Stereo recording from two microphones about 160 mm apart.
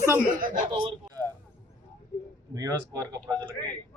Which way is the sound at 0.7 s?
35° right (ahead or behind).